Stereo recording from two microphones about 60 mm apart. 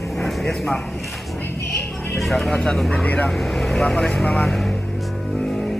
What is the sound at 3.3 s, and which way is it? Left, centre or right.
Speech, centre.